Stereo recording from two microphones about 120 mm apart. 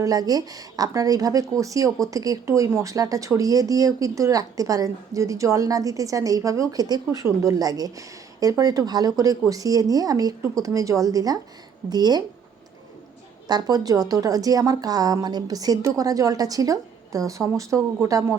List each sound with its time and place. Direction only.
0.0 s a woman's voice: 30° right (ahead or behind)
13.5 s a woman's voice: 35° right (ahead or behind)